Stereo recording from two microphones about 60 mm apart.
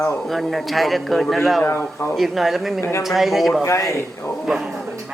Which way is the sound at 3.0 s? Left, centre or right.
Centre.